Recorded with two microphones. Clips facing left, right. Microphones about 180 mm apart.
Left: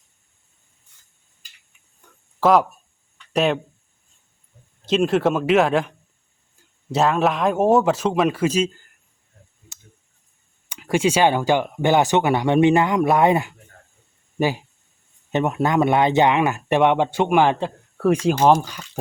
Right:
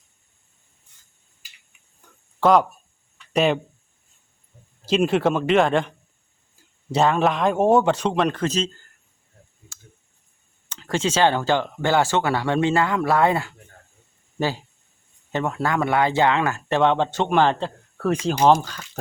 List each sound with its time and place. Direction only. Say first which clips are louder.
2.0 s a sound: left 1 dB; centre (ahead or behind)
2.4 s speech: even; 5° left (ahead or behind)
3.2 s a sound: even; centre (ahead or behind)
4.9 s speech: left 1 dB; centre (ahead or behind)
6.9 s speech: even; centre (ahead or behind)
10.7 s speech: left 4 dB; 10° left (ahead or behind)